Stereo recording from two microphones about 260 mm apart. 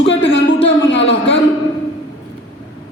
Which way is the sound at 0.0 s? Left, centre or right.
Left.